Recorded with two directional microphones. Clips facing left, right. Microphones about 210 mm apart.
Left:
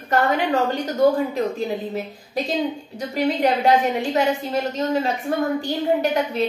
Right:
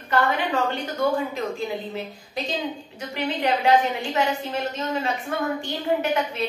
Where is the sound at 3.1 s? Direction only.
40° left (ahead or behind).